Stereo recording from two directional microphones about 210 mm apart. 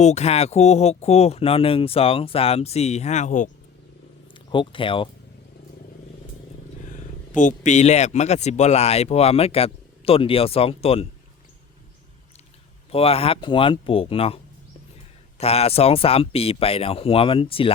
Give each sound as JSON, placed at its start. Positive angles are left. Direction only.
{"t": 0.0, "sound": "speech", "side_deg": 30}
{"t": 4.5, "sound": "speech", "side_deg": 25}
{"t": 6.8, "sound": "a man's voice", "side_deg": 35}
{"t": 12.9, "sound": "speech", "side_deg": 30}